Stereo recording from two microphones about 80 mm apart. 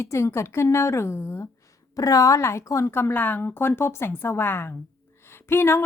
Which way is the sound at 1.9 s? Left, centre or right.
Left.